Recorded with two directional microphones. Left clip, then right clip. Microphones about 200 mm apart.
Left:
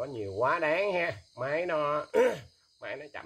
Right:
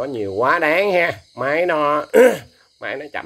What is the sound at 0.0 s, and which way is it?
Speech, 30° right (ahead or behind).